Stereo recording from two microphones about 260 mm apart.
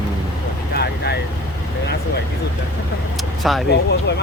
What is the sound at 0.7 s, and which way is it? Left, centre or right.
Speech, left.